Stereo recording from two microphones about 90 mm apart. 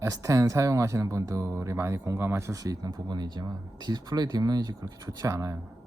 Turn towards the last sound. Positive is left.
turn(degrees=-35)  # may be behind; listen again after turning